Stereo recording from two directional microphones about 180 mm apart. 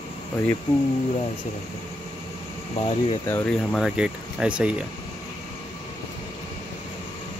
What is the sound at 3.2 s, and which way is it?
Speech, 10° left (ahead or behind).